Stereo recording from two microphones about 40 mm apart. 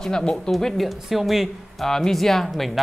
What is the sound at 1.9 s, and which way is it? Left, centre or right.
Speech, centre.